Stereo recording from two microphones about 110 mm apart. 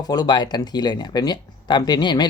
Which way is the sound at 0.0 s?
35° left (ahead or behind).